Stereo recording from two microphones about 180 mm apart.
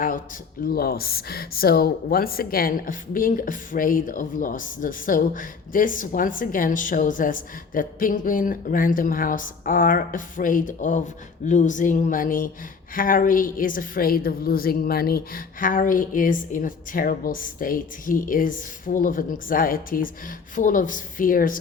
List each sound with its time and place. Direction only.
0.7 s speech: 55° left (ahead or behind)